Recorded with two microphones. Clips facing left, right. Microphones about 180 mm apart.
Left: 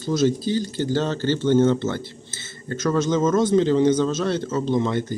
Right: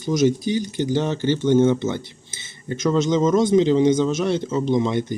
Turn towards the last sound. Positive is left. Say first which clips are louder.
# right 2 dB
turn(degrees=-15)  # may be behind; listen again after turning